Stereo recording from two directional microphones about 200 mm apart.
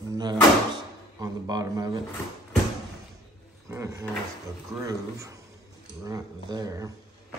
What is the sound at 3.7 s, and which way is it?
Speech, 15° right (ahead or behind).